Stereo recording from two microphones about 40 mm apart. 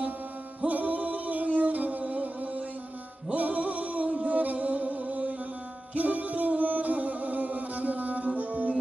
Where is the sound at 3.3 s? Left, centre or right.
Right.